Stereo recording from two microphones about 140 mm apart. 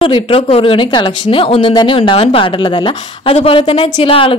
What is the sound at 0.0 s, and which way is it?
A woman's voice, 40° left (ahead or behind).